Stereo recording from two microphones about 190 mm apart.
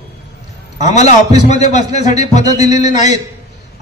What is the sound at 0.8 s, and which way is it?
A man's voice, 35° left (ahead or behind).